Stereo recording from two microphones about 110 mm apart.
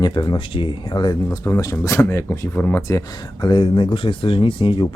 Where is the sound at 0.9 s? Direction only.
40° left (ahead or behind).